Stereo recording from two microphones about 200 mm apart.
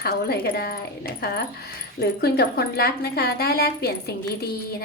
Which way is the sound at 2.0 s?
55° left (ahead or behind).